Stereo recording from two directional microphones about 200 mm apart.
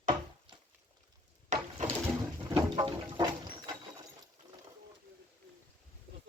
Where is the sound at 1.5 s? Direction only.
35° right (ahead or behind).